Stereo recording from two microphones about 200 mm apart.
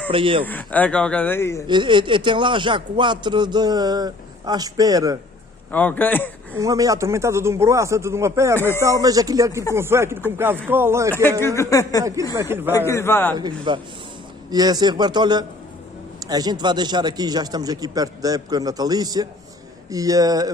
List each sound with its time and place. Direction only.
0.1 s a man's voice: 25° right (ahead or behind)
0.5 s speech: 5° left (ahead or behind)
1.7 s a man's voice: 25° right (ahead or behind)
5.7 s speech: 10° left (ahead or behind)
6.6 s speech: 15° right (ahead or behind)
8.5 s speech: 10° left (ahead or behind)
8.8 s speech: 15° right (ahead or behind)
11.4 s speech: 15° left (ahead or behind)
12.4 s speech: 10° right (ahead or behind)
12.8 s speech: 15° left (ahead or behind)
13.3 s a man's voice: 20° right (ahead or behind)